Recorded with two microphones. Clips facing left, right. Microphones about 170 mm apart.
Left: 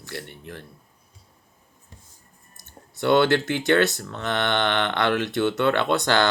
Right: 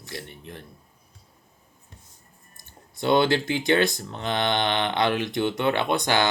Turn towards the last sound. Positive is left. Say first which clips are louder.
# left 2 dB
turn(degrees=-15)  # may be behind; listen again after turning